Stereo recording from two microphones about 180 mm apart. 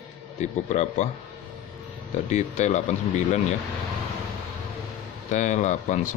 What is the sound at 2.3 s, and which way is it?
Speech, 40° left (ahead or behind).